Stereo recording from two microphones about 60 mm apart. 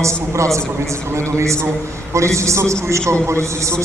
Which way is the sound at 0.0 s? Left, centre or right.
Right.